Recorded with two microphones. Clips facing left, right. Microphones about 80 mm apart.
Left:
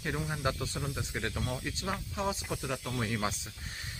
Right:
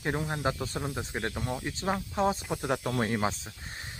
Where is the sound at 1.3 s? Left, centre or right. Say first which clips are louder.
Right 3 dB; centre.